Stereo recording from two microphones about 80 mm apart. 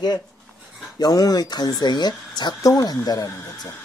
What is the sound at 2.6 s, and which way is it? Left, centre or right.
Speech, left.